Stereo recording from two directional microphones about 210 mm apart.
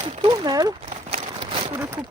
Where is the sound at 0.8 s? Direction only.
30° right (ahead or behind).